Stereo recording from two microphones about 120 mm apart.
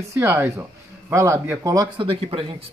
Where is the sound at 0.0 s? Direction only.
20° right (ahead or behind).